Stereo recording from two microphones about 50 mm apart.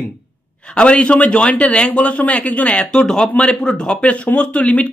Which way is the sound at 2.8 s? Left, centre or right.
Centre.